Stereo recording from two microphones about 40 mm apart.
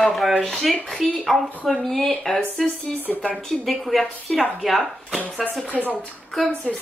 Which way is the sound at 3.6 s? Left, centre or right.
Centre.